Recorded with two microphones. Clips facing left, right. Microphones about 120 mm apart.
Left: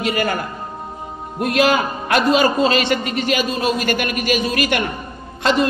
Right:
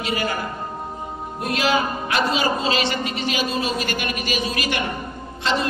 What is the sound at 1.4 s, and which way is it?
A man's voice, 55° left (ahead or behind).